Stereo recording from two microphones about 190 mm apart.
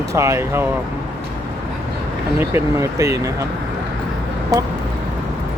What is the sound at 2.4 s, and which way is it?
Speech, 15° right (ahead or behind).